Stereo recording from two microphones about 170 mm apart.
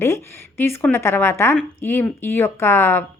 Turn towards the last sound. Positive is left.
turn(degrees=15)  # may be behind; listen again after turning